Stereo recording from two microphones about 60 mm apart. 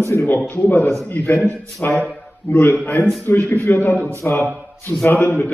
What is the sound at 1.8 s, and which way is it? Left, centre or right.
Speech, left.